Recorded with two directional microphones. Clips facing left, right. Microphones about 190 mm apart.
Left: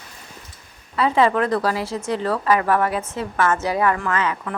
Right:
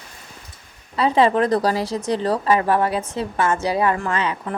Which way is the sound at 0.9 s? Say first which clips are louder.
Right 1 dB; 30° right (ahead or behind).